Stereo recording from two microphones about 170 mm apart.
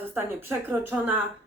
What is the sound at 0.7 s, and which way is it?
Speech, 10° right (ahead or behind).